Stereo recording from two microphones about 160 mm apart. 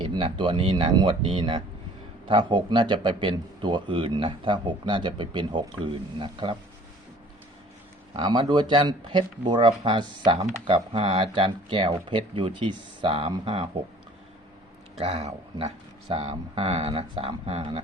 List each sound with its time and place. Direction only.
0.0 s speech: 35° right (ahead or behind)
8.2 s speech: 30° right (ahead or behind)
14.9 s speech: 40° right (ahead or behind)